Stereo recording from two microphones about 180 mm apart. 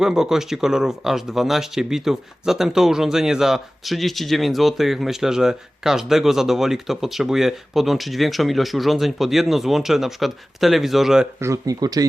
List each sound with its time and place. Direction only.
0.0 s speech: 5° right (ahead or behind)
11.3 s speech: 15° right (ahead or behind)